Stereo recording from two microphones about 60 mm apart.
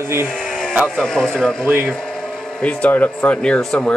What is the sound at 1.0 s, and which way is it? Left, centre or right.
Speech, centre.